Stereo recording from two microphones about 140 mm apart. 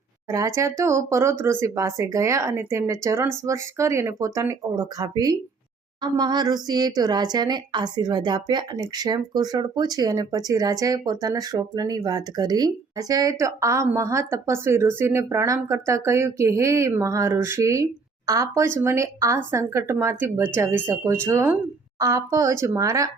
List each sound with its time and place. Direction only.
0.3 s a woman's voice: 20° right (ahead or behind)